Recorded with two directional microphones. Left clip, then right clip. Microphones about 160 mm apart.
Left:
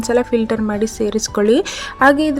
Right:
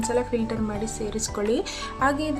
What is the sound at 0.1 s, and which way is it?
Speech, 35° left (ahead or behind).